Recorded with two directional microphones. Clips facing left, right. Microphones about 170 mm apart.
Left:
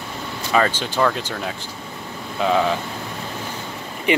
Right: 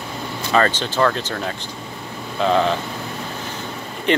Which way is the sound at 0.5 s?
10° left (ahead or behind).